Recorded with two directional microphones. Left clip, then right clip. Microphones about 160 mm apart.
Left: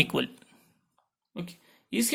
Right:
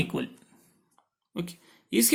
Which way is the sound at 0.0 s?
15° left (ahead or behind).